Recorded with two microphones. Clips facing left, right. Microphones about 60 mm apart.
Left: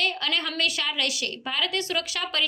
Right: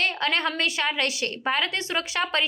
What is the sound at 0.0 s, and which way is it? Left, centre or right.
A woman's voice, right.